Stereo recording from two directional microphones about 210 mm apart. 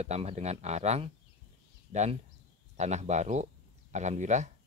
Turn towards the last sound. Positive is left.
turn(degrees=-35)  # may be behind; listen again after turning